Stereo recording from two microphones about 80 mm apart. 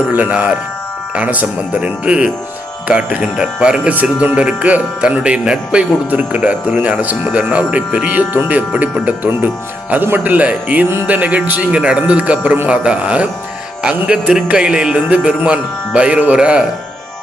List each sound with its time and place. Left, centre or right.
0.1 s speech: right